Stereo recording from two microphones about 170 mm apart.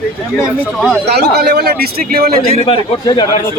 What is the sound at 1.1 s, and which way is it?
Speech, 75° right (ahead or behind).